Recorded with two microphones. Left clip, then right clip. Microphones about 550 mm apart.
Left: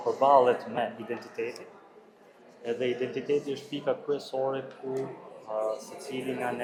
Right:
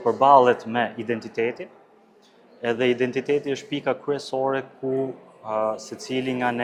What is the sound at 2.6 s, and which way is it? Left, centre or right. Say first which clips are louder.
A man's voice: right 8 dB; right.